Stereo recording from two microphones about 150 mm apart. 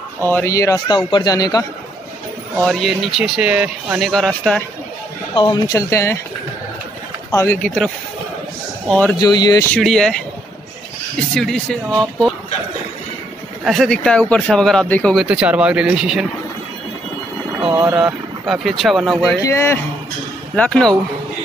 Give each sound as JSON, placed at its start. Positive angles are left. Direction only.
{"t": 0.3, "sound": "a man's voice", "side_deg": 15}
{"t": 2.6, "sound": "speech", "side_deg": 0}
{"t": 4.1, "sound": "speech", "side_deg": 5}
{"t": 5.3, "sound": "a man's voice", "side_deg": 30}
{"t": 7.2, "sound": "speech", "side_deg": 20}
{"t": 9.1, "sound": "a man's voice", "side_deg": 25}
{"t": 9.8, "sound": "speech", "side_deg": 5}
{"t": 11.1, "sound": "speech", "side_deg": 5}
{"t": 13.7, "sound": "speech", "side_deg": 0}
{"t": 15.1, "sound": "speech", "side_deg": -10}
{"t": 17.7, "sound": "speech", "side_deg": -5}
{"t": 19.4, "sound": "speech", "side_deg": 20}
{"t": 20.5, "sound": "speech", "side_deg": 5}